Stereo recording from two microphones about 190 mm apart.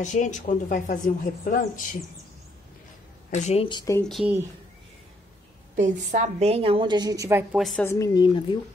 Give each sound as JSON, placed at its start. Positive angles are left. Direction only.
{"t": 0.0, "sound": "speech", "side_deg": 40}
{"t": 3.3, "sound": "a woman's voice", "side_deg": 35}
{"t": 4.0, "sound": "speech", "side_deg": 0}
{"t": 5.8, "sound": "a woman's voice", "side_deg": -40}
{"t": 7.5, "sound": "speech", "side_deg": 0}
{"t": 7.8, "sound": "a woman's voice", "side_deg": 15}